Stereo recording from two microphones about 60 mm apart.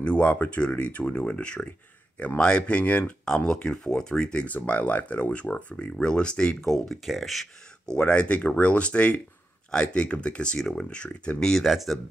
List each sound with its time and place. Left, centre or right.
0.0 s speech: left; by 7.4 s centre
8.0 s speech: left; by 12.0 s centre